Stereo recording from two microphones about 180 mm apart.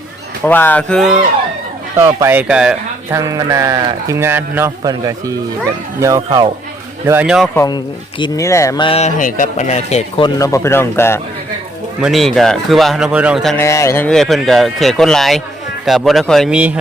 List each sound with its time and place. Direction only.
0.4 s speech: 10° left (ahead or behind)
2.0 s speech: 15° right (ahead or behind)
3.2 s a man's voice: 20° right (ahead or behind); by 7.5 s 5° right (ahead or behind)
7.5 s speech: 15° left (ahead or behind)
8.9 s speech: 40° left (ahead or behind)
10.2 s speech: 20° left (ahead or behind)
12.0 s speech: centre (ahead or behind)
13.6 s speech: 15° left (ahead or behind); by 16.7 s 5° right (ahead or behind)